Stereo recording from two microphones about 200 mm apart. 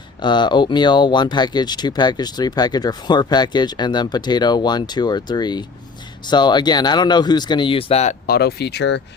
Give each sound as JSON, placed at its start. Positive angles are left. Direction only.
{"t": 0.2, "sound": "speech", "side_deg": 20}
{"t": 8.3, "sound": "speech", "side_deg": 55}